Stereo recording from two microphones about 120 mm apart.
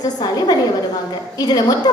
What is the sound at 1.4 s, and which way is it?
Speech, 35° left (ahead or behind).